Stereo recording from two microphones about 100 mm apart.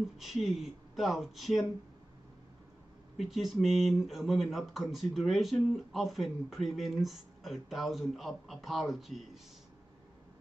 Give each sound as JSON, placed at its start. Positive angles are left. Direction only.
{"t": 0.2, "sound": "speech", "side_deg": 0}
{"t": 3.2, "sound": "speech", "side_deg": 0}